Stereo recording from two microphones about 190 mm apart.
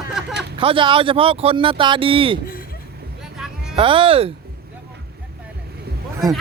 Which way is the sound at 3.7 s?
25° right (ahead or behind).